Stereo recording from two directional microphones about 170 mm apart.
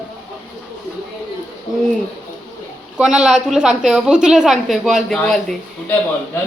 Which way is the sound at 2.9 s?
5° right (ahead or behind).